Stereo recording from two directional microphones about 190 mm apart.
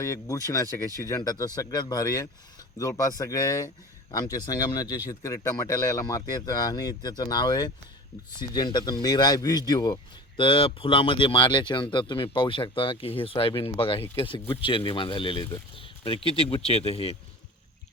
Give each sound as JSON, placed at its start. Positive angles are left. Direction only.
{"t": 0.0, "sound": "speech", "side_deg": 15}